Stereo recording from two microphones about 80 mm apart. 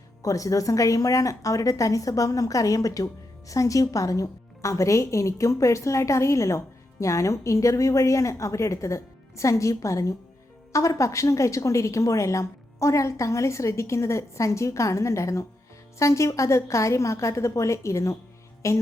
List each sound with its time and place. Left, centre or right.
0.2 s a woman's voice: left